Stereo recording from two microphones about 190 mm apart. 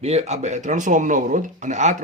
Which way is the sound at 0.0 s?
35° right (ahead or behind).